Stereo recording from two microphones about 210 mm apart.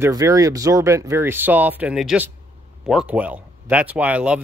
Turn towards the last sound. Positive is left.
turn(degrees=-5)  # may be behind; listen again after turning